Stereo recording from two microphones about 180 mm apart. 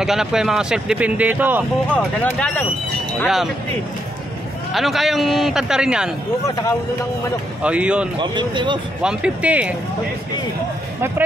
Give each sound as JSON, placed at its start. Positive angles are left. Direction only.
{"t": 0.0, "sound": "a man's voice", "side_deg": 0}
{"t": 1.9, "sound": "speech", "side_deg": 10}
{"t": 3.2, "sound": "a man's voice", "side_deg": 0}
{"t": 4.7, "sound": "a man's voice", "side_deg": 0}
{"t": 7.6, "sound": "speech", "side_deg": -5}
{"t": 8.2, "sound": "speech", "side_deg": -25}
{"t": 9.0, "sound": "speech", "side_deg": -5}